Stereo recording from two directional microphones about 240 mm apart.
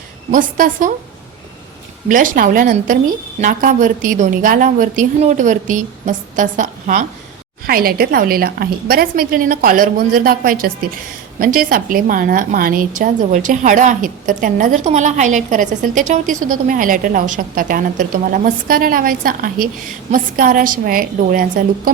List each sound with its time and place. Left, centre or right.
0.3 s a woman's voice: right
2.0 s a woman's voice: right